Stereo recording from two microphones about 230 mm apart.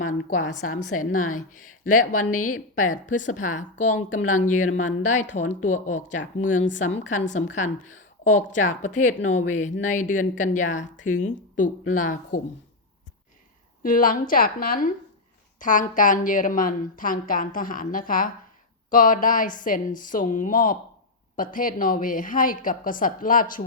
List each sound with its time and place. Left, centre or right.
0.0 s speech: left
2.3 s a woman's voice: left
2.9 s speech: left
13.8 s speech: left